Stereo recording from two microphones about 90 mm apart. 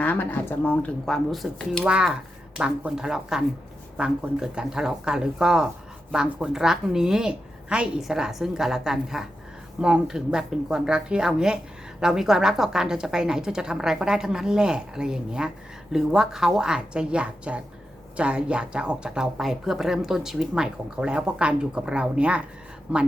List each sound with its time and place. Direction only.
0.0 s speech: 20° left (ahead or behind); by 1.8 s 5° left (ahead or behind)
1.8 s speech: 10° right (ahead or behind)